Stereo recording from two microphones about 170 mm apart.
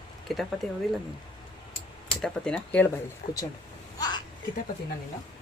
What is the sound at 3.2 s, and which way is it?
Speech, 55° left (ahead or behind).